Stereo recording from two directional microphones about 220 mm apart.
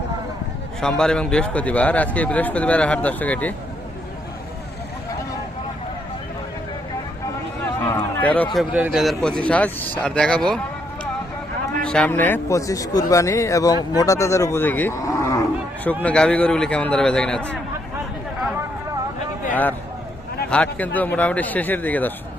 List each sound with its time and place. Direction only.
0.8 s a man's voice: 5° left (ahead or behind)
7.9 s a sound: 10° left (ahead or behind)
8.5 s a man's voice: 5° right (ahead or behind)
11.8 s a man's voice: 5° left (ahead or behind)
20.5 s a man's voice: 5° left (ahead or behind)